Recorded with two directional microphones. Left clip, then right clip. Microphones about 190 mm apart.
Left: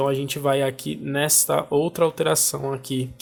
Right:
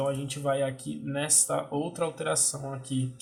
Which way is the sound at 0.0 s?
45° left (ahead or behind).